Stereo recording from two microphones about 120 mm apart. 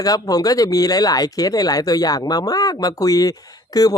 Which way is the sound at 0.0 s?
30° left (ahead or behind).